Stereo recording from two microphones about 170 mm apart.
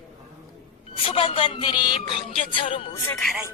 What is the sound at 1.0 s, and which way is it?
Speech, 35° left (ahead or behind).